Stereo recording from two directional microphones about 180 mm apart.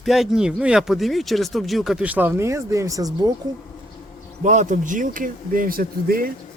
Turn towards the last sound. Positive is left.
turn(degrees=-55)  # may be behind; listen again after turning